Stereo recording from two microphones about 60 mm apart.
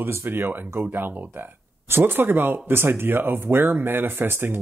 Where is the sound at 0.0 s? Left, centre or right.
Right.